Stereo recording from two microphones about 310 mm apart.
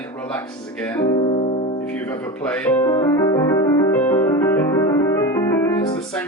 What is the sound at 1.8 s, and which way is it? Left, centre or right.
Music, centre.